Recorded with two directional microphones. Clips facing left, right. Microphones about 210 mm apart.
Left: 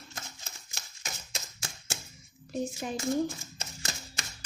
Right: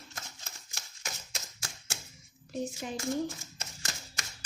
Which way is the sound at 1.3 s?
20° left (ahead or behind).